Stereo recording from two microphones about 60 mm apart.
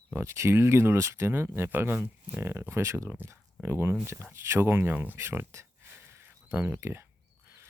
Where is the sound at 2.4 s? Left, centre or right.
Right.